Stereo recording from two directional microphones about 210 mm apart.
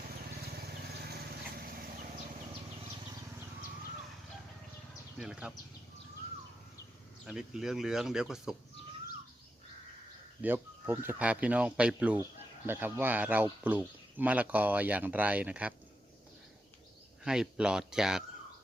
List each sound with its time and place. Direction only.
0.7 s vehicle: 50° right (ahead or behind)
5.2 s speech: 5° right (ahead or behind)
7.3 s speech: 5° right (ahead or behind)
10.4 s speech: 10° right (ahead or behind)
17.2 s speech: 5° right (ahead or behind)